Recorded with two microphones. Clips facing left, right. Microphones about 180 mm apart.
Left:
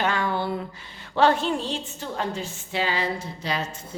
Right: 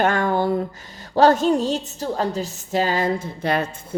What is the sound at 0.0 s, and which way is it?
A woman's voice, 45° right (ahead or behind).